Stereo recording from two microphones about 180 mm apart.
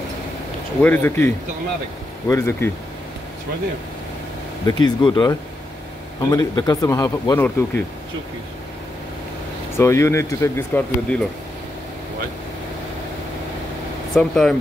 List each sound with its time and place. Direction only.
0.8 s speech: 10° left (ahead or behind)
4.8 s speech: 25° left (ahead or behind)
9.8 s speech: 15° left (ahead or behind)
14.1 s speech: 5° left (ahead or behind)